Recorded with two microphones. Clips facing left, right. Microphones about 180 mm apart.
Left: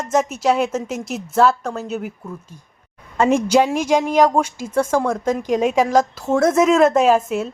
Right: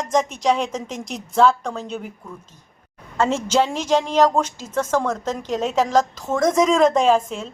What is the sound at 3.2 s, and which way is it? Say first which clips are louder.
A woman's voice: left 4 dB; 15° left (ahead or behind).